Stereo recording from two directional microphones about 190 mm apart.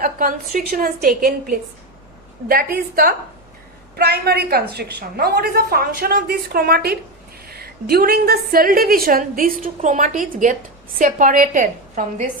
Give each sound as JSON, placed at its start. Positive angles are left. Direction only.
{"t": 0.0, "sound": "a woman's voice", "side_deg": -45}